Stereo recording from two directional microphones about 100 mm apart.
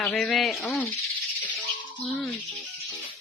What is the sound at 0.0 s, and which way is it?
Speech, 5° left (ahead or behind).